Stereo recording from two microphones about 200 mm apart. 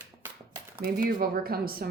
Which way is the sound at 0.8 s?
50° right (ahead or behind).